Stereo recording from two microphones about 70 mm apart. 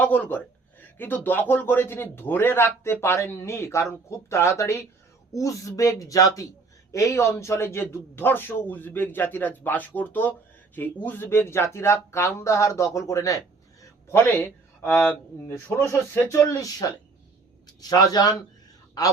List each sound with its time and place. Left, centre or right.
0.0 s a man's voice: left
14.1 s speech: left
14.9 s a man's voice: left
15.7 s speech: left
16.5 s speech: left
17.7 s speech: left